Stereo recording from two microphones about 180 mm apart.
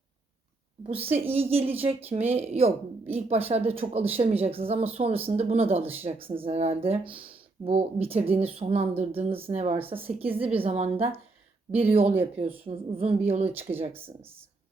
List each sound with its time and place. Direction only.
0.9 s a woman's voice: 30° right (ahead or behind)